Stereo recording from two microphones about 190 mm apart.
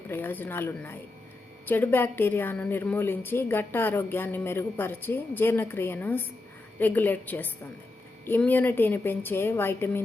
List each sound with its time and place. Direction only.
0.1 s a woman's voice: 10° left (ahead or behind)